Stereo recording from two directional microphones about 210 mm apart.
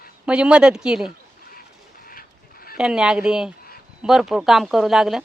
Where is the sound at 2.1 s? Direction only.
45° left (ahead or behind).